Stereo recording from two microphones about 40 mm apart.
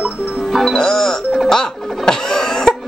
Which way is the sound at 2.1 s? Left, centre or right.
Centre.